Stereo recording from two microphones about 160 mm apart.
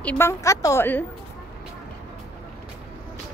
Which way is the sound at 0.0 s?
10° left (ahead or behind).